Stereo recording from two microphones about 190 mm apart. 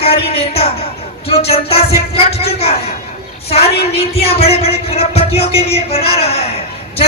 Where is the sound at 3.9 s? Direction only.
30° left (ahead or behind).